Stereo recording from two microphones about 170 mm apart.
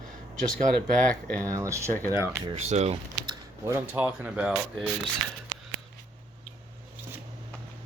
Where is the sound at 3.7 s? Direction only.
10° right (ahead or behind).